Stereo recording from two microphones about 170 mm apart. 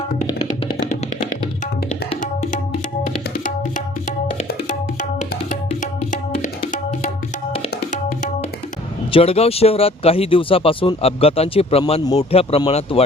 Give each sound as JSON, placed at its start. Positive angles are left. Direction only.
{"t": 5.5, "sound": "music", "side_deg": 50}
{"t": 9.1, "sound": "speech", "side_deg": 35}